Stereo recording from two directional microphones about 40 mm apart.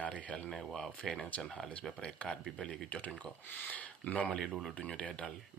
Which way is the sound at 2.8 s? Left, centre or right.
Left.